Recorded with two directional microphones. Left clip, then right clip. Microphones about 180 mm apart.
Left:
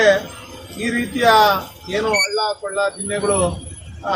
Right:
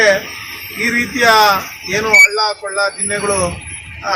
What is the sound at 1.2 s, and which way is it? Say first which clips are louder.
Speech: right 3 dB; 20° right (ahead or behind).